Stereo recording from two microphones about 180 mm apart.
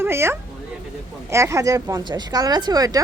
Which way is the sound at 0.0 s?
15° right (ahead or behind).